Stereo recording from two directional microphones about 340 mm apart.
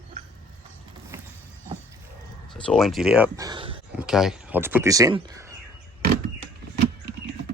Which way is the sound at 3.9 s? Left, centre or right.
Centre.